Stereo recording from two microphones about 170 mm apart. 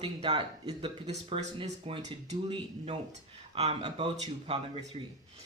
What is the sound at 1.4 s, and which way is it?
Speech, 40° right (ahead or behind).